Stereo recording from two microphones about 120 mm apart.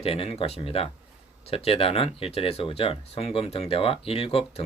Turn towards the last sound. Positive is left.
turn(degrees=50)  # may be behind; listen again after turning